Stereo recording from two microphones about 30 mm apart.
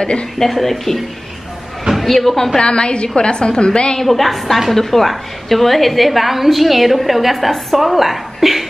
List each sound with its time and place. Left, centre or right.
0.0 s a woman's voice: left
0.4 s speech: centre
2.3 s speech: centre
2.6 s a woman's voice: left
4.0 s a woman's voice: centre